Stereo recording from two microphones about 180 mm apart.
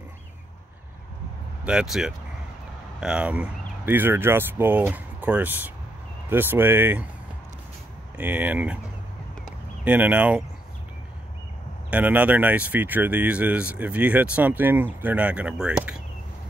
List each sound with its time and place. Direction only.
1.6 s speech: 5° right (ahead or behind)
8.2 s speech: 10° right (ahead or behind)
9.8 s speech: 10° right (ahead or behind)
11.9 s speech: 10° right (ahead or behind)